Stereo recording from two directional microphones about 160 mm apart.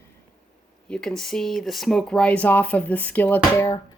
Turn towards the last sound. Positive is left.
turn(degrees=20)  # may be behind; listen again after turning